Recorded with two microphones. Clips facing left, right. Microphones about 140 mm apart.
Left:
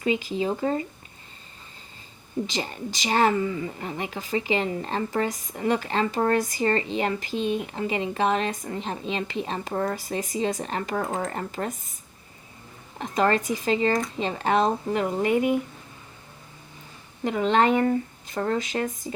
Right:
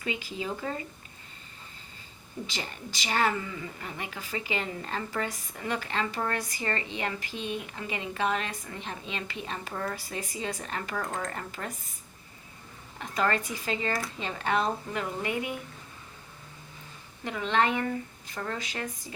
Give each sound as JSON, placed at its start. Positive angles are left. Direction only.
{"t": 0.0, "sound": "a woman's voice", "side_deg": 25}
{"t": 2.6, "sound": "a woman's voice", "side_deg": 25}
{"t": 8.4, "sound": "speech", "side_deg": 40}
{"t": 8.8, "sound": "a woman's voice", "side_deg": 30}
{"t": 11.0, "sound": "speech", "side_deg": 5}
{"t": 11.3, "sound": "a woman's voice", "side_deg": 30}
{"t": 13.0, "sound": "a woman's voice", "side_deg": 25}
{"t": 17.2, "sound": "speech", "side_deg": 30}
{"t": 18.6, "sound": "a woman's voice", "side_deg": 25}